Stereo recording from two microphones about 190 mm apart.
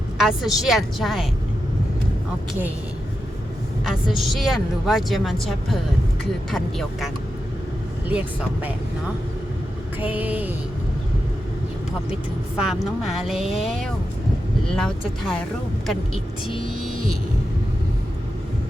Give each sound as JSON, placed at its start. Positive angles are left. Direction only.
{"t": 0.2, "sound": "speech", "side_deg": 0}
{"t": 3.8, "sound": "speech", "side_deg": 0}
{"t": 10.0, "sound": "speech", "side_deg": -10}
{"t": 12.5, "sound": "speech", "side_deg": -5}
{"t": 16.5, "sound": "vehicle", "side_deg": 30}